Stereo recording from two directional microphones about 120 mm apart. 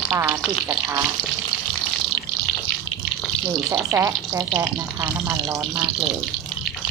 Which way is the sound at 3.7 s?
15° right (ahead or behind).